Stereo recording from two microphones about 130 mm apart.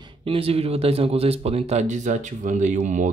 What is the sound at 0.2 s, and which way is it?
Speech, 45° right (ahead or behind).